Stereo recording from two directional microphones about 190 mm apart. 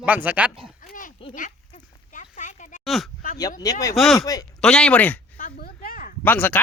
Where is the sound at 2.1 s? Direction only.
40° left (ahead or behind).